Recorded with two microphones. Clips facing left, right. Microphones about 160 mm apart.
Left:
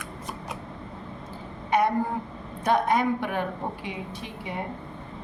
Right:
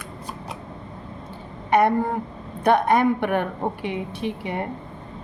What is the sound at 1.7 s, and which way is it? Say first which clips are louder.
A woman's voice: right 5 dB; 60° right (ahead or behind).